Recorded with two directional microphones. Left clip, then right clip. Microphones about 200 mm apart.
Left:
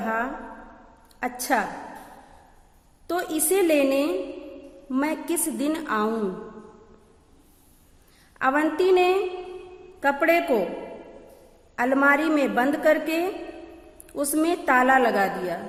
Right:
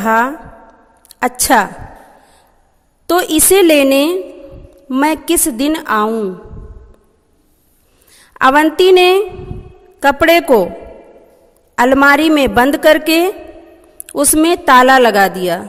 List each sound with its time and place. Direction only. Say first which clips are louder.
0.0 s a woman's voice: right 14 dB; 50° right (ahead or behind)
3.1 s a woman's voice: right 14 dB; 45° right (ahead or behind)
8.3 s a woman's voice: right 13 dB; 45° right (ahead or behind)
11.7 s a woman's voice: right 11 dB; 45° right (ahead or behind)